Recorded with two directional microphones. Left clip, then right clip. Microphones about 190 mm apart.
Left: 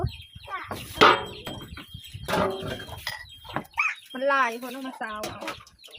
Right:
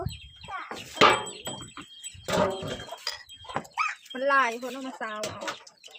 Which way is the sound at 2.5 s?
5° right (ahead or behind).